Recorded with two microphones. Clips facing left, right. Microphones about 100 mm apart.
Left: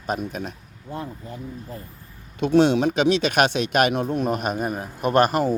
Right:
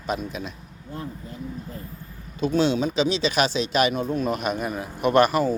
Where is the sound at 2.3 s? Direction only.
60° left (ahead or behind).